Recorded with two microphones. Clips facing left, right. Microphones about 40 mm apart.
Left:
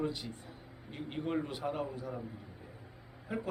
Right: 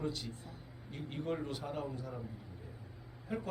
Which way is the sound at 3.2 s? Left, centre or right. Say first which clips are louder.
Left 2 dB; centre.